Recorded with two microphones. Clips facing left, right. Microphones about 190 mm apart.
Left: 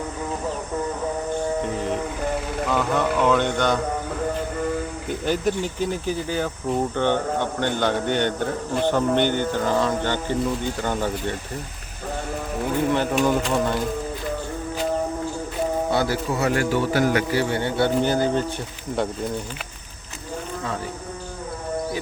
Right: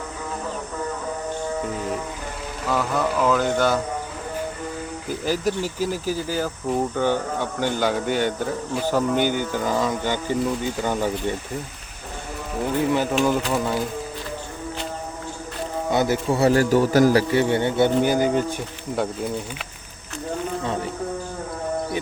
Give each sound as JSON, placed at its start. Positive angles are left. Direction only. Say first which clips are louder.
{"t": 2.6, "sound": "speech", "louder": "even", "side_deg": -5}
{"t": 5.0, "sound": "speech", "louder": "even", "side_deg": 0}
{"t": 12.9, "sound": "speech", "louder": "left 1 dB", "side_deg": -5}
{"t": 15.9, "sound": "speech", "louder": "right 2 dB", "side_deg": -20}
{"t": 16.4, "sound": "a man's voice", "louder": "right 5 dB", "side_deg": -35}
{"t": 17.4, "sound": "speech", "louder": "right 3 dB", "side_deg": -20}